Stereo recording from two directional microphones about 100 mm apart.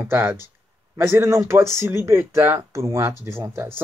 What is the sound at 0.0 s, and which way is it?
Speech, 20° right (ahead or behind).